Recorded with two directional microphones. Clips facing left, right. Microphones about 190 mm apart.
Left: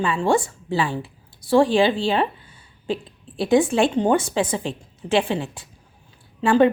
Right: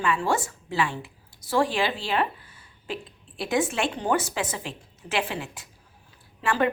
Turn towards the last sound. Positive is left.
turn(degrees=25)  # may be behind; listen again after turning